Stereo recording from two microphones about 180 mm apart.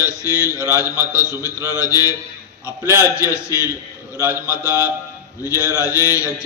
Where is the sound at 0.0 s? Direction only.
15° left (ahead or behind).